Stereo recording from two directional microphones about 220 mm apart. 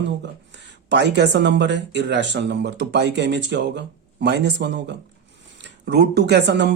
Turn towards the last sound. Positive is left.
turn(degrees=-50)  # may be behind; listen again after turning